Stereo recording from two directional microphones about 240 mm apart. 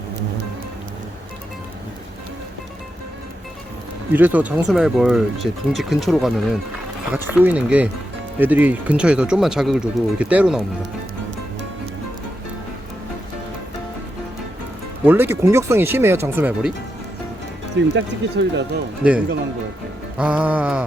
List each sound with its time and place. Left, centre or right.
4.1 s speech: centre
15.0 s speech: centre
17.7 s speech: right
20.1 s speech: centre